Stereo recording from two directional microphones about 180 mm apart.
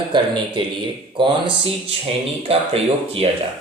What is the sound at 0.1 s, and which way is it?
Speech, 25° right (ahead or behind).